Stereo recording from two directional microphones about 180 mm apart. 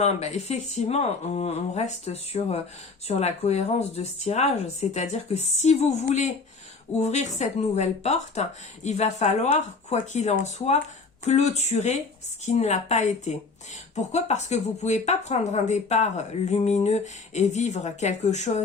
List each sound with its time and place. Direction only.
0.0 s speech: 40° left (ahead or behind)